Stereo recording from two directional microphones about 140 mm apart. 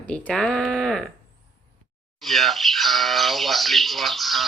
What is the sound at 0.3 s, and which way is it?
Speech, centre (ahead or behind).